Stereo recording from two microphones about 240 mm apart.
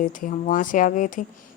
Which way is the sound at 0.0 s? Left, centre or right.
Left.